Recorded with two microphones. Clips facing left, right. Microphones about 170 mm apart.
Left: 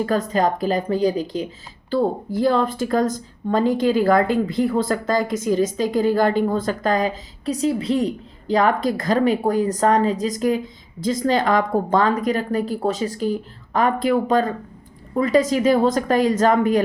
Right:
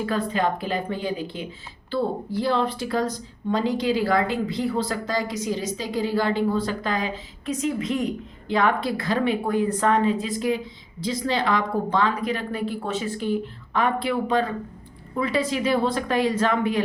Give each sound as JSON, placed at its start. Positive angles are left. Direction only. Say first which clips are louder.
{"t": 0.0, "sound": "speech", "louder": "left 4 dB", "side_deg": 40}